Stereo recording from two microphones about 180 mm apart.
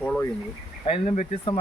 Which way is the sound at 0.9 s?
35° left (ahead or behind).